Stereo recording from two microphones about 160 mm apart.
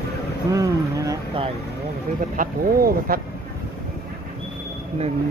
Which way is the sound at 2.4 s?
65° right (ahead or behind).